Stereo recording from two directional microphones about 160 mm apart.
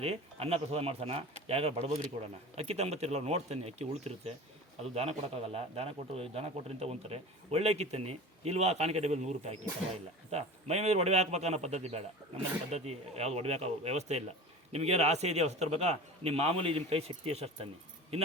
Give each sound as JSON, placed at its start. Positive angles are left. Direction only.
{"t": 0.0, "sound": "a man's voice", "side_deg": -40}